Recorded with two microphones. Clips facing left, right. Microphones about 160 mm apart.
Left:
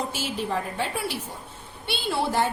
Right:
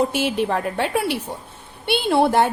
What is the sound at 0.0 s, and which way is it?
A woman's voice, 65° right (ahead or behind).